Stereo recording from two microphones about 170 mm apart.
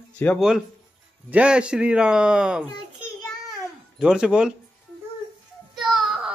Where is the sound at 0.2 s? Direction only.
10° left (ahead or behind).